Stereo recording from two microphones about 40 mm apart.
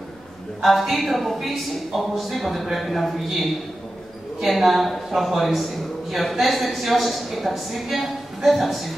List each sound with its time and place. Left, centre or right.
0.6 s a man's voice: centre
4.5 s a man's voice: centre